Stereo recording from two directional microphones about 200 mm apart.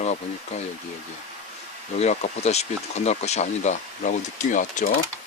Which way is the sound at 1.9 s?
35° left (ahead or behind).